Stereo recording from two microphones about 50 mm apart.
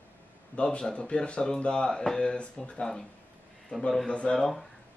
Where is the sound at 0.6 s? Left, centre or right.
Centre.